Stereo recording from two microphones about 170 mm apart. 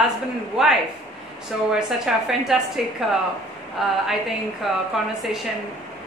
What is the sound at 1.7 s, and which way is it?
A woman's voice, 5° right (ahead or behind).